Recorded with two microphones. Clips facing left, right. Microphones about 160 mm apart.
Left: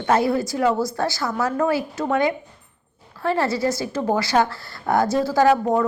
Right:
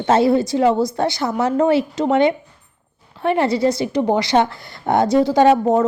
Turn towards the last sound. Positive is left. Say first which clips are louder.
# right 4 dB
turn(degrees=-20)  # may be behind; listen again after turning